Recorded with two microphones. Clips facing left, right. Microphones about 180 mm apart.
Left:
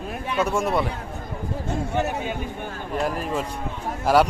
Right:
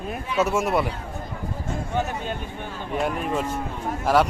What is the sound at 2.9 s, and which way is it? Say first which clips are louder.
Speech: even; centre (ahead or behind).